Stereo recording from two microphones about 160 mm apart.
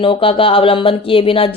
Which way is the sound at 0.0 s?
35° left (ahead or behind).